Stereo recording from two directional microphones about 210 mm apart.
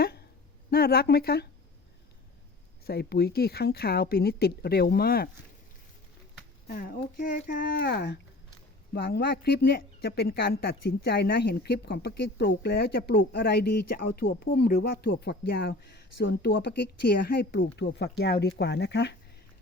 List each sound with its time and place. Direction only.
0.0 s a sound: 50° left (ahead or behind)
0.7 s a woman's voice: 45° left (ahead or behind)
2.8 s a woman's voice: 50° left (ahead or behind)
6.7 s a woman's voice: 45° left (ahead or behind)